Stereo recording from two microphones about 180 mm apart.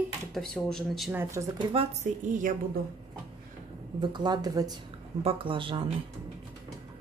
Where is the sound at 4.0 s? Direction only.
25° right (ahead or behind).